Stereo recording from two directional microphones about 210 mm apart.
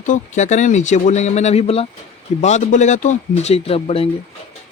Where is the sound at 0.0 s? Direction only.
35° left (ahead or behind).